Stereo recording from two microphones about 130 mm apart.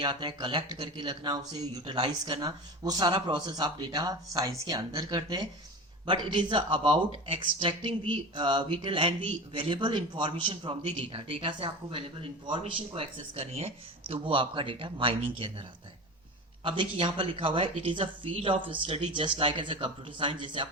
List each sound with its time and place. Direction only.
0.0 s speech: 35° right (ahead or behind)
16.6 s speech: 40° right (ahead or behind)